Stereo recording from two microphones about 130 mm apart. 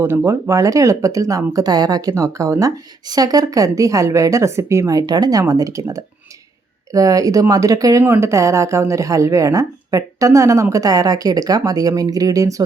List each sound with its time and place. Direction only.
0.0 s speech: 20° right (ahead or behind)